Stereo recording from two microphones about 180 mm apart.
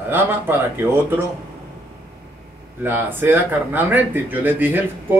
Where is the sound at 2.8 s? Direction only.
10° right (ahead or behind).